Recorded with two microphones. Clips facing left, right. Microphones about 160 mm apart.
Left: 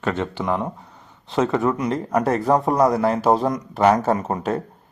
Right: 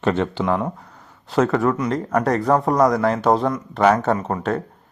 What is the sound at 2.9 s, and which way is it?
Speech, 30° left (ahead or behind).